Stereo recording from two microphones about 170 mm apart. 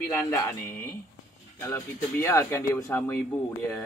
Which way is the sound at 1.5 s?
15° left (ahead or behind).